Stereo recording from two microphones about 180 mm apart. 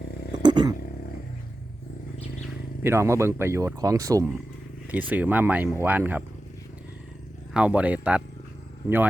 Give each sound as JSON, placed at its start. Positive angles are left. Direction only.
{"t": 0.4, "sound": "vehicle", "side_deg": -25}
{"t": 2.8, "sound": "speech", "side_deg": -15}
{"t": 7.5, "sound": "speech", "side_deg": -5}